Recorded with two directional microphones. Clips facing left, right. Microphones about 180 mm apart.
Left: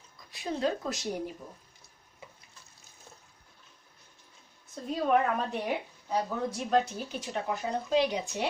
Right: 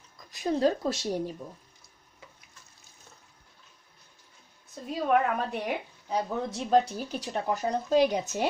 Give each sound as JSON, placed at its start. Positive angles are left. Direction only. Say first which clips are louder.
{"t": 0.3, "sound": "speech", "louder": "right 5 dB", "side_deg": -40}
{"t": 4.8, "sound": "a woman's voice", "louder": "right 1 dB", "side_deg": -5}
{"t": 6.0, "sound": "a woman's voice", "louder": "right 1 dB", "side_deg": -20}
{"t": 6.8, "sound": "speech", "louder": "right 2 dB", "side_deg": -35}